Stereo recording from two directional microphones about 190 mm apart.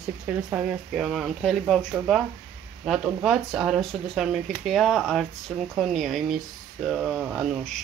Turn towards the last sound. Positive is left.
turn(degrees=0)  # may be behind; listen again after turning